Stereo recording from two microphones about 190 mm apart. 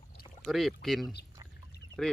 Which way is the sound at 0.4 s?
Centre (ahead or behind).